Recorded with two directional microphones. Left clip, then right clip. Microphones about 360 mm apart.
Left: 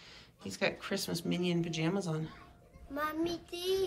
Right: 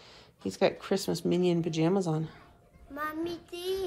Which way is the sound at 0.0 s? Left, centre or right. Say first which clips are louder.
Right 8 dB; centre.